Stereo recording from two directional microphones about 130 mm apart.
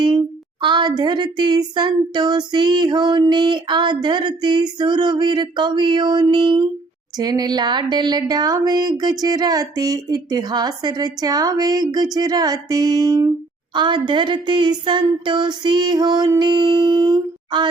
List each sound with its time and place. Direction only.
0.6 s speech: 35° right (ahead or behind)